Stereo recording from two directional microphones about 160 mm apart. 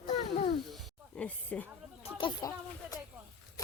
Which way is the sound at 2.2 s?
25° left (ahead or behind).